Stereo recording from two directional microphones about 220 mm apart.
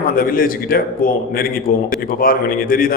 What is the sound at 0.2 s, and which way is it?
A man's voice, 40° left (ahead or behind).